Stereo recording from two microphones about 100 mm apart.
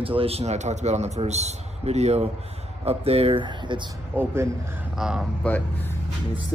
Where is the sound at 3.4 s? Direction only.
50° right (ahead or behind).